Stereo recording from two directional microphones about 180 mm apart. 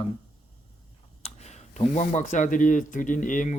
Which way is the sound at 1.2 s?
35° left (ahead or behind).